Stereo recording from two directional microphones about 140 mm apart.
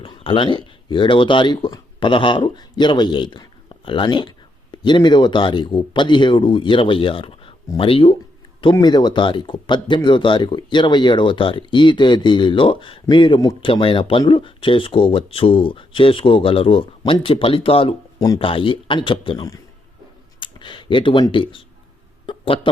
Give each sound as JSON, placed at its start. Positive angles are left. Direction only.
{"t": 0.0, "sound": "speech", "side_deg": 40}
{"t": 8.7, "sound": "speech", "side_deg": 30}
{"t": 22.3, "sound": "a sound", "side_deg": 40}